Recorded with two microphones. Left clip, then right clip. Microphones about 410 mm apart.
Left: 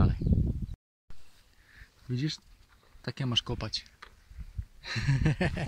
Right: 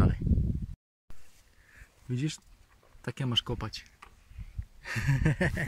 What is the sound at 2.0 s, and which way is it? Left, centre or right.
Speech, centre.